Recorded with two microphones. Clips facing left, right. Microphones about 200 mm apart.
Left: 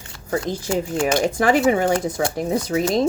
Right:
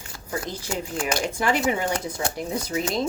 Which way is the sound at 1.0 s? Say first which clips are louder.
Left 6 dB; 45° left (ahead or behind).